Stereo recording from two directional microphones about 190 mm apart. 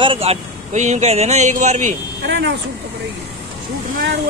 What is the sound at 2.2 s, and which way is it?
Vehicle, 65° right (ahead or behind).